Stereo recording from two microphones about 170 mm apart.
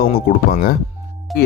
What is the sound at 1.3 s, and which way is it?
Speech, 70° left (ahead or behind).